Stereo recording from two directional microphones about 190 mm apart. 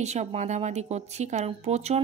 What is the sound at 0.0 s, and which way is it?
Speech, 35° right (ahead or behind).